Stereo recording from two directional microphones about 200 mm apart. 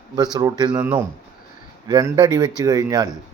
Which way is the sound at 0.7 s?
10° right (ahead or behind).